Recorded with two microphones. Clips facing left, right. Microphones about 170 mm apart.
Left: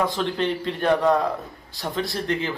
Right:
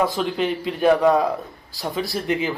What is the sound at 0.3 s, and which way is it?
Speech, 10° right (ahead or behind).